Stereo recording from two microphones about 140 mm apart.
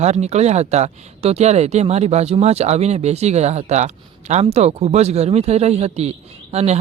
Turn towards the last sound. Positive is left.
turn(degrees=-50)  # may be behind; listen again after turning